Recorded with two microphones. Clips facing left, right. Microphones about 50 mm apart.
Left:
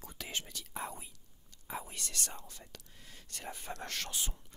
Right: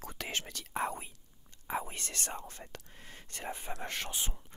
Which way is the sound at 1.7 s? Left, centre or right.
Right.